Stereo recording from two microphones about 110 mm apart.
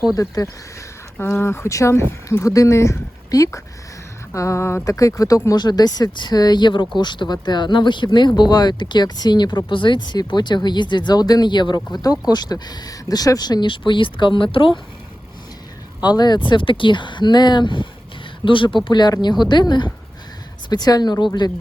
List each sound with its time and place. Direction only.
1.2 s speech: 25° left (ahead or behind); by 14.7 s 50° left (ahead or behind)
16.0 s speech: 40° left (ahead or behind)
16.5 s speech: 50° left (ahead or behind)